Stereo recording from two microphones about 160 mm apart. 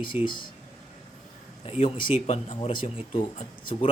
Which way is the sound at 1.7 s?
35° left (ahead or behind).